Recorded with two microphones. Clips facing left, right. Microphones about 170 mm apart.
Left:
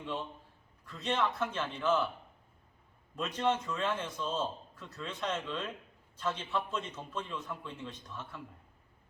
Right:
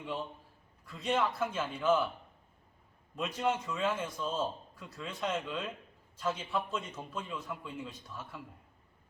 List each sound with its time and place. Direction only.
0.9 s a man's voice: 10° right (ahead or behind)
3.2 s a man's voice: 10° right (ahead or behind)